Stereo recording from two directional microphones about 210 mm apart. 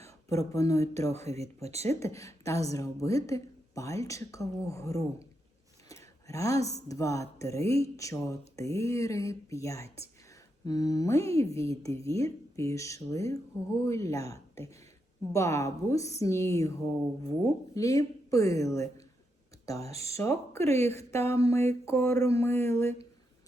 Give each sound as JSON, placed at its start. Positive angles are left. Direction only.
{"t": 0.3, "sound": "speech", "side_deg": 15}
{"t": 1.1, "sound": "speech", "side_deg": -30}
{"t": 1.9, "sound": "speech", "side_deg": 15}
{"t": 19.8, "sound": "speech", "side_deg": -30}
{"t": 20.1, "sound": "speech", "side_deg": 10}